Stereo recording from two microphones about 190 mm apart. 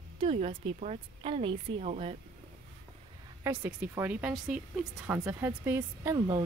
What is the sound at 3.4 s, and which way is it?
Speech, 10° right (ahead or behind).